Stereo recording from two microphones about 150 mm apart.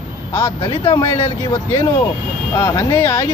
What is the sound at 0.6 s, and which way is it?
Speech, 35° left (ahead or behind).